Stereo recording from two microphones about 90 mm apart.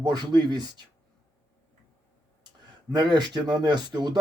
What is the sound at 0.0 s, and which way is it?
Speech, 50° right (ahead or behind).